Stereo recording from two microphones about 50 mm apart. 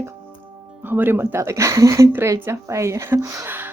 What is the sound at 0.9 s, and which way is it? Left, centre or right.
A woman's voice, right.